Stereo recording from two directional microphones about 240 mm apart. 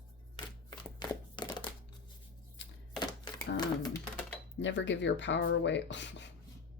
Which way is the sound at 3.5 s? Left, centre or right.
Centre.